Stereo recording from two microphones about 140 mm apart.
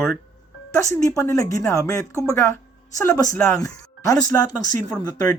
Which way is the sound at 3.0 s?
25° left (ahead or behind).